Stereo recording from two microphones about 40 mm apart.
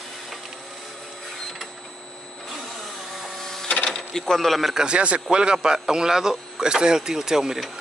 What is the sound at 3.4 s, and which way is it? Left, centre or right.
Printer, centre.